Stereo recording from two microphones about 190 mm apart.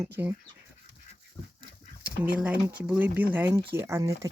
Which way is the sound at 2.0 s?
5° right (ahead or behind).